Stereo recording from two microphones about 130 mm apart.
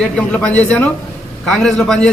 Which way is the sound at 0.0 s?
5° left (ahead or behind).